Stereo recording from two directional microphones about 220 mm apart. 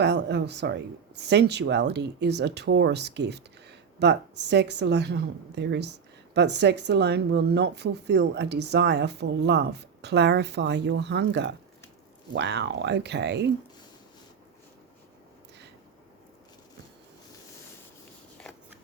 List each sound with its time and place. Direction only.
0.0 s speech: 50° right (ahead or behind)